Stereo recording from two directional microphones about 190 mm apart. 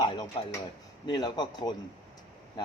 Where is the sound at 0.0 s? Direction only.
20° left (ahead or behind).